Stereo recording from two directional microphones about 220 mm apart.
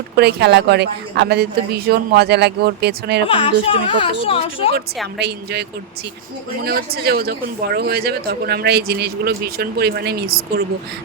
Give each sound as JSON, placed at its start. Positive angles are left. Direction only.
{"t": 0.2, "sound": "speech", "side_deg": -50}
{"t": 3.2, "sound": "a woman's voice", "side_deg": 25}
{"t": 5.1, "sound": "speech", "side_deg": -50}
{"t": 6.7, "sound": "speech", "side_deg": -45}